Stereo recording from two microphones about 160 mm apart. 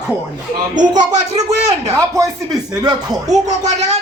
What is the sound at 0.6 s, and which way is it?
A woman's voice, 50° right (ahead or behind).